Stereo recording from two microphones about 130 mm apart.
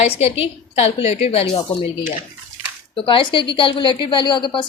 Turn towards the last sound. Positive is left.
turn(degrees=40)  # may be behind; listen again after turning